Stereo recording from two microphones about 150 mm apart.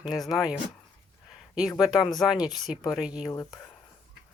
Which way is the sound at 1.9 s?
25° left (ahead or behind).